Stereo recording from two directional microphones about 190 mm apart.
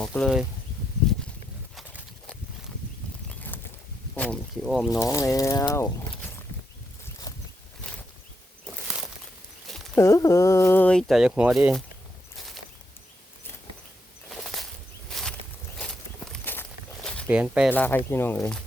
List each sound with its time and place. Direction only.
0.0 s speech: 5° left (ahead or behind)
3.5 s a sound: 10° left (ahead or behind)
4.1 s speech: 5° left (ahead or behind)
4.9 s speech: 15° left (ahead or behind)
9.6 s a sound: centre (ahead or behind)
10.0 s speech: 15° left (ahead or behind); by 11.8 s 5° right (ahead or behind)
14.3 s a sound: centre (ahead or behind)
16.3 s walk: 10° left (ahead or behind)
17.2 s speech: 5° right (ahead or behind)
17.7 s speech: 10° left (ahead or behind)